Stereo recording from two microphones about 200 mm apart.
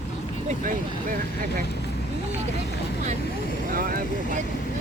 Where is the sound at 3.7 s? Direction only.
45° right (ahead or behind).